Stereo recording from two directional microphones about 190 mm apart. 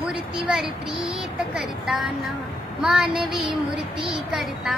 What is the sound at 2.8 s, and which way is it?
A woman's voice, 5° right (ahead or behind).